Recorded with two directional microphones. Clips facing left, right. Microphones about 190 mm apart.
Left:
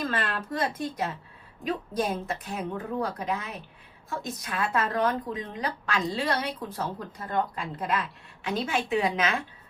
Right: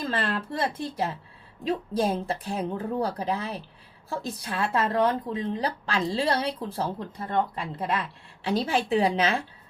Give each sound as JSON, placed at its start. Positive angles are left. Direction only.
{"t": 0.1, "sound": "speech", "side_deg": -30}